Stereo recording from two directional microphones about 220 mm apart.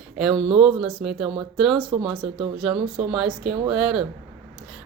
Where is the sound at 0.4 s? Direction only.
5° right (ahead or behind).